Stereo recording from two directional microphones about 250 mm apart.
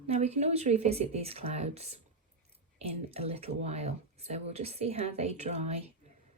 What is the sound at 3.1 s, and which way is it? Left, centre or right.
Speech, right.